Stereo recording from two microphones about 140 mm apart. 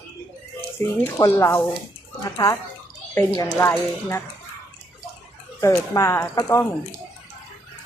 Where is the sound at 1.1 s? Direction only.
20° left (ahead or behind).